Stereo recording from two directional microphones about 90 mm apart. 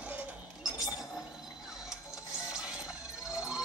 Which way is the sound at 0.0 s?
15° right (ahead or behind).